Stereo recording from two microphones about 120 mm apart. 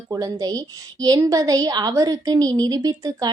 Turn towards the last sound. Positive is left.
turn(degrees=-30)  # may be behind; listen again after turning